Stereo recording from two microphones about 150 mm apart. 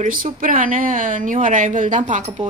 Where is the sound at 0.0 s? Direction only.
65° right (ahead or behind).